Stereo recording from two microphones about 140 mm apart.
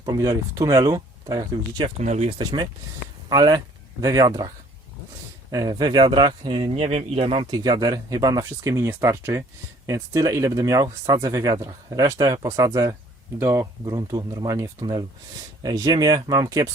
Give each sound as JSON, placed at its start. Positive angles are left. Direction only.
{"t": 0.0, "sound": "speech", "side_deg": -30}
{"t": 2.0, "sound": "speech", "side_deg": -55}
{"t": 2.4, "sound": "speech", "side_deg": -30}
{"t": 7.5, "sound": "speech", "side_deg": -30}